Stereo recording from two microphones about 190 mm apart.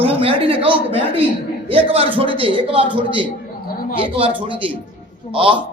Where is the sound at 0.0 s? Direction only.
30° right (ahead or behind).